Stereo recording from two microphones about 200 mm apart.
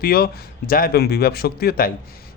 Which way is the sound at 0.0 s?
50° left (ahead or behind).